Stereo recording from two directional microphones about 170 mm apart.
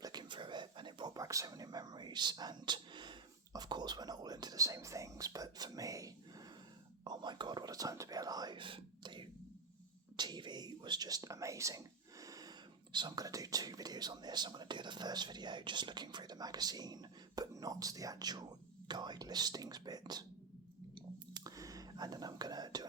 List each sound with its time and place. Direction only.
0.0 s a sound: 25° right (ahead or behind)
7.0 s whispering: 25° right (ahead or behind)
18.9 s speech: 25° right (ahead or behind)
20.9 s whispering: 25° right (ahead or behind)